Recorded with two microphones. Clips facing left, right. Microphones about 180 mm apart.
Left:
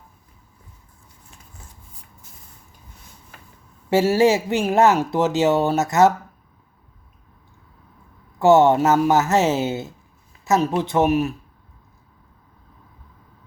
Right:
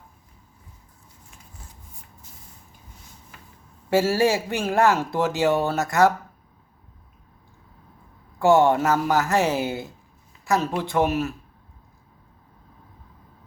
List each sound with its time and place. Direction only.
3.8 s speech: 20° left (ahead or behind)
8.4 s speech: 20° left (ahead or behind)